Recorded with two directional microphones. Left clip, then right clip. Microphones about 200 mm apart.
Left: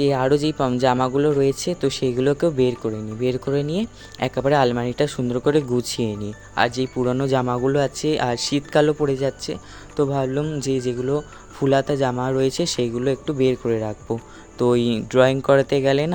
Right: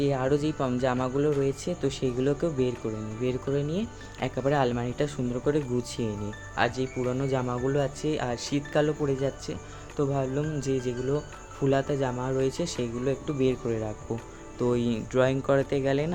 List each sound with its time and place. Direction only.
0.0 s speech: 45° left (ahead or behind)